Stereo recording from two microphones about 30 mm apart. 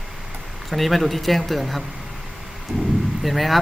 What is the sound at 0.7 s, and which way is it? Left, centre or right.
Speech, centre.